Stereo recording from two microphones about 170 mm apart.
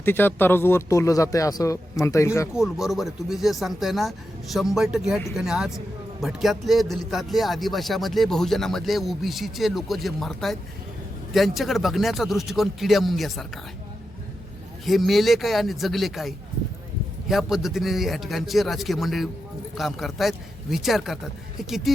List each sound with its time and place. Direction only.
0.0 s speech: 10° left (ahead or behind)
2.6 s speech: centre (ahead or behind)
14.8 s speech: centre (ahead or behind)